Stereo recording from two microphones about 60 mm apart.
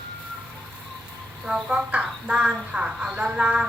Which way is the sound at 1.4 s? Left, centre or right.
Centre.